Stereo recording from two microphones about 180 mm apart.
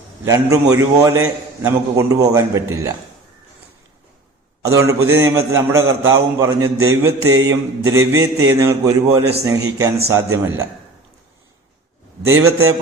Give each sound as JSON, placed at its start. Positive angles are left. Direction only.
{"t": 0.3, "sound": "a man's voice", "side_deg": -20}
{"t": 4.7, "sound": "a man's voice", "side_deg": -15}